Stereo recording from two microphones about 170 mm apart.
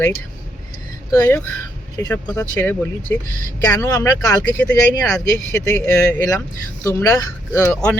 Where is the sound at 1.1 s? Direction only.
15° left (ahead or behind).